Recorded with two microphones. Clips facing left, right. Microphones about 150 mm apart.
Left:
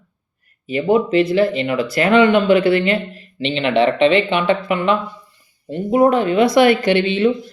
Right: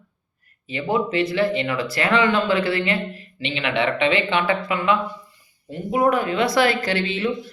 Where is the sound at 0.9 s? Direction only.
20° left (ahead or behind).